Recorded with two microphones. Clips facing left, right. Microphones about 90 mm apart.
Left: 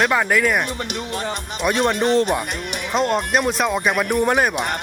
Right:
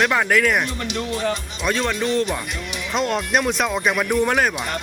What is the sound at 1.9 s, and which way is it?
Speech, 55° left (ahead or behind).